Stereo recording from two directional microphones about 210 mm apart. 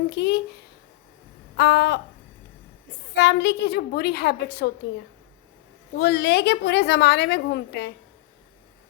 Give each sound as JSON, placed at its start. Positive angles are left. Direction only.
{"t": 0.1, "sound": "a woman's voice", "side_deg": 50}
{"t": 1.5, "sound": "a woman's voice", "side_deg": 50}
{"t": 3.2, "sound": "a woman's voice", "side_deg": 50}
{"t": 6.0, "sound": "a woman's voice", "side_deg": 50}